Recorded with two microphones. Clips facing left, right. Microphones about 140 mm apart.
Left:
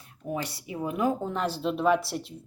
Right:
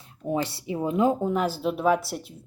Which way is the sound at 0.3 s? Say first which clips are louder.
Right 6 dB; 25° right (ahead or behind).